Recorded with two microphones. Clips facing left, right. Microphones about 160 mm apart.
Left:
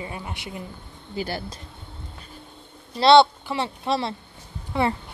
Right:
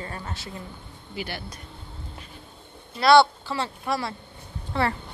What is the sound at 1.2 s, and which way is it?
Speech, 40° left (ahead or behind).